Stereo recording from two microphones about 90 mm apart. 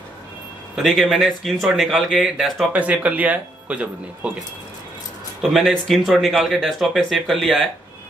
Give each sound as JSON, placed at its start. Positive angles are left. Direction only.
{"t": 0.8, "sound": "speech", "side_deg": 0}
{"t": 2.7, "sound": "speech", "side_deg": -15}
{"t": 5.5, "sound": "speech", "side_deg": 0}